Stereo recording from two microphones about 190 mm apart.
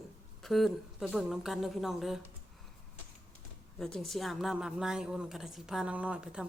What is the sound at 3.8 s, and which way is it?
A woman's voice, centre (ahead or behind).